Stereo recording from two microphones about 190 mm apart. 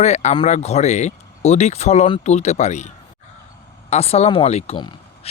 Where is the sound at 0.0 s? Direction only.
35° left (ahead or behind).